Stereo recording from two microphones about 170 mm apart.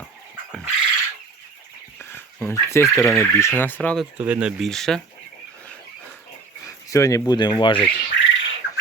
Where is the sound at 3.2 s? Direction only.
15° left (ahead or behind).